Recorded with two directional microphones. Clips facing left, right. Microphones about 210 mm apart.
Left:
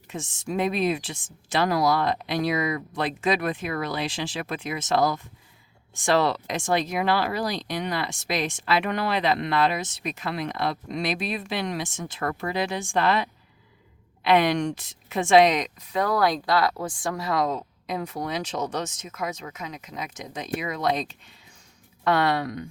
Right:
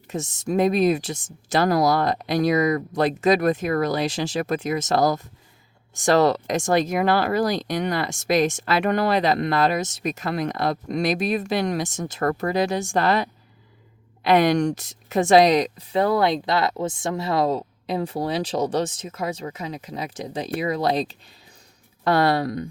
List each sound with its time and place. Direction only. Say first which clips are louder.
0.1 s speech: right 5 dB; 40° right (ahead or behind)